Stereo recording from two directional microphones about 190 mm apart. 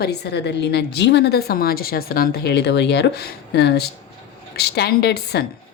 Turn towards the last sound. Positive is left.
turn(degrees=55)  # may be behind; listen again after turning